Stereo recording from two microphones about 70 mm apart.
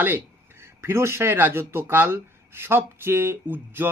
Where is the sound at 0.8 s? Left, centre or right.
Right.